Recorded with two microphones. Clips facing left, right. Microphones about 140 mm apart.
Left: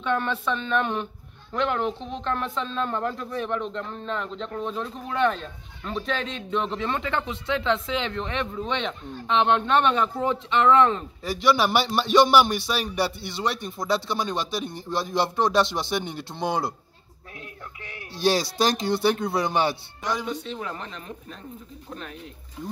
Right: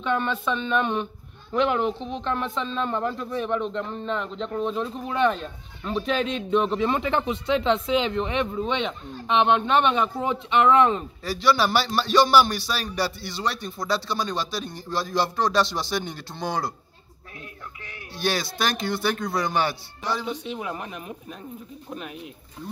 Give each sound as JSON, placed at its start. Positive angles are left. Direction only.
{"t": 0.0, "sound": "speech", "side_deg": 0}
{"t": 11.2, "sound": "a man's voice", "side_deg": 15}
{"t": 17.8, "sound": "a man's voice", "side_deg": 30}
{"t": 20.2, "sound": "speech", "side_deg": -15}